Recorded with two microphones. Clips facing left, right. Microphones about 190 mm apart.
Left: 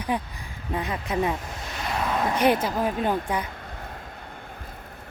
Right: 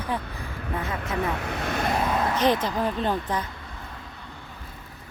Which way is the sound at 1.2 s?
70° right (ahead or behind).